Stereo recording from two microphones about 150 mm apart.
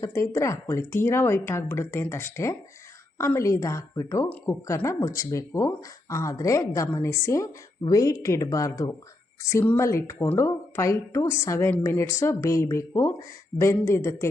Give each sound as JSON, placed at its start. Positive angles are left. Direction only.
{"t": 0.0, "sound": "speech", "side_deg": 20}